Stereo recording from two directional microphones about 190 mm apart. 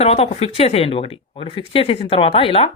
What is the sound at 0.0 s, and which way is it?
Speech, 30° left (ahead or behind).